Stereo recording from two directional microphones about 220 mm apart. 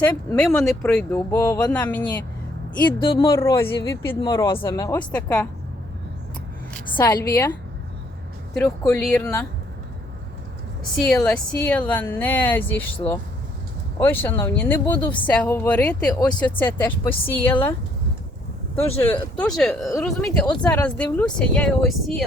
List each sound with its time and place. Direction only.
0.0 s speech: 5° left (ahead or behind)
3.0 s speech: 25° left (ahead or behind); by 5.5 s 5° left (ahead or behind)
6.7 s a woman's voice: 10° left (ahead or behind)
8.5 s speech: 10° left (ahead or behind)
11.3 s speech: 5° left (ahead or behind)
18.9 s speech: 10° left (ahead or behind)